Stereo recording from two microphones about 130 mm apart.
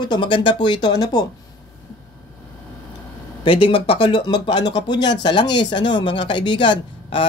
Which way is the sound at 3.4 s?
40° left (ahead or behind).